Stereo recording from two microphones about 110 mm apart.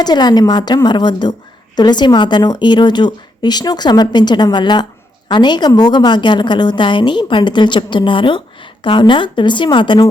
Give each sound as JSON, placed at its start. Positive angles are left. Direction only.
{"t": 0.0, "sound": "a woman's voice", "side_deg": 40}